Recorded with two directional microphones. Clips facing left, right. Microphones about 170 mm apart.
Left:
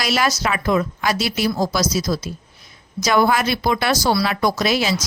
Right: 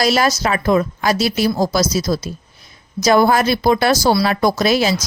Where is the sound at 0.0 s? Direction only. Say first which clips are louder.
Right 4 dB; 35° right (ahead or behind).